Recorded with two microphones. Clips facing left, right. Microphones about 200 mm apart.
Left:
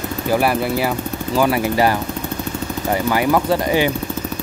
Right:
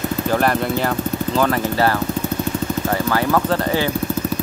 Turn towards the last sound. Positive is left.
turn(degrees=15)  # may be behind; listen again after turning